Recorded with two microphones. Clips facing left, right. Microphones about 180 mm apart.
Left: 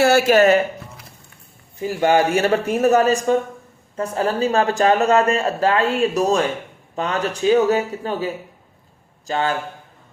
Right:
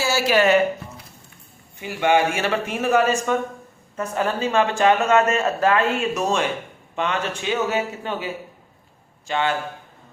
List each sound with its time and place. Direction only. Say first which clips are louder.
0.0 s speech: left 6 dB; 55° left (ahead or behind)
1.8 s speech: left 2 dB; 40° left (ahead or behind)